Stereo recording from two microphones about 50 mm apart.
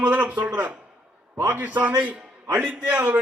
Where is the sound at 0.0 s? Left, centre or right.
Right.